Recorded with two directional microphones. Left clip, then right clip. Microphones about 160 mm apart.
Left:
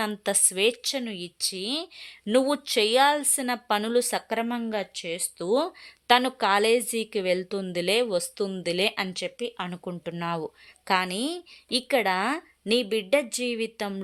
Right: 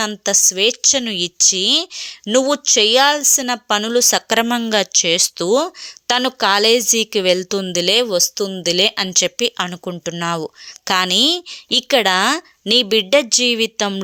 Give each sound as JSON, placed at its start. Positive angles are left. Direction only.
{"t": 0.0, "sound": "a woman's voice", "side_deg": -20}
{"t": 5.5, "sound": "a woman's voice", "side_deg": -30}
{"t": 9.2, "sound": "a woman's voice", "side_deg": -40}
{"t": 9.6, "sound": "a woman's voice", "side_deg": -25}